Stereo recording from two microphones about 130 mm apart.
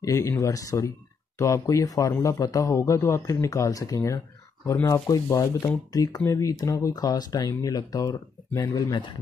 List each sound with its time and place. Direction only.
0.0 s speech: 20° left (ahead or behind)